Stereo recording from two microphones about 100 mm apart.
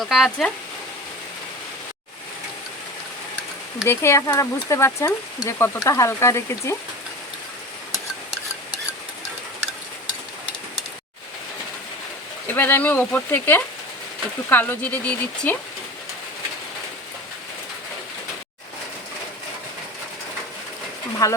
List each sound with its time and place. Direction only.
0.0 s speech: centre (ahead or behind)
3.8 s speech: 25° left (ahead or behind)
12.5 s speech: 20° left (ahead or behind)
21.2 s speech: 35° left (ahead or behind)